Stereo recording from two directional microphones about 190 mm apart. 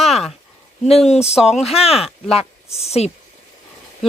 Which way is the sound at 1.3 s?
5° right (ahead or behind).